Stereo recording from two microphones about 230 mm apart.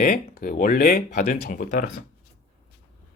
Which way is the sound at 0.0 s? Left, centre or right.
Left.